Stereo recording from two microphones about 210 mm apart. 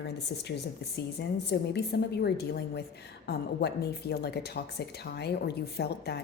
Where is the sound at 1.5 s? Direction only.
50° left (ahead or behind).